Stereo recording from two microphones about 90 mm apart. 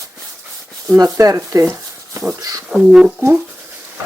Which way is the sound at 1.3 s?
30° right (ahead or behind).